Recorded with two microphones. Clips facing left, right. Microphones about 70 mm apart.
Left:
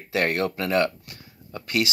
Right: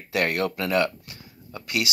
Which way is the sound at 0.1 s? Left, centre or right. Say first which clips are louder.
Left 1 dB; left.